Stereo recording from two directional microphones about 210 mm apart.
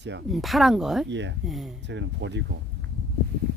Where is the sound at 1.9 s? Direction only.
55° right (ahead or behind).